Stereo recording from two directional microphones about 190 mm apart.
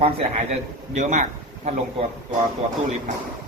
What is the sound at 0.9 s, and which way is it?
A man's voice, 40° right (ahead or behind).